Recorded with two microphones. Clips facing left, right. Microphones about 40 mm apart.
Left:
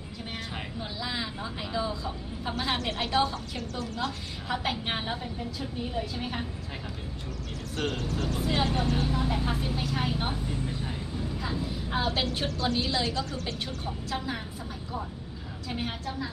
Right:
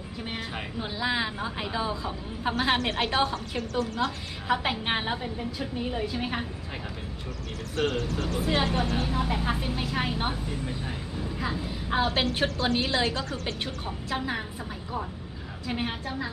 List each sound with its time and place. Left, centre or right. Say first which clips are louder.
0.3 s a sound: right 3 dB; centre
0.8 s a woman's voice: right 7 dB; right
7.8 s a woman's voice: right 3 dB; right
8.4 s speech: right 2 dB; centre
8.7 s a woman's voice: right 1 dB; right
11.3 s a woman's voice: right 3 dB; right
13.8 s a woman's voice: right 2 dB; right
15.6 s a woman's voice: right 3 dB; right